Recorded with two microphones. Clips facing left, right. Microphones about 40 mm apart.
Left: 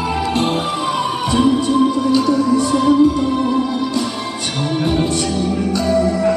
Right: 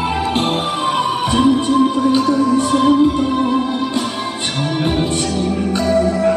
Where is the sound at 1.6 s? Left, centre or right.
Right.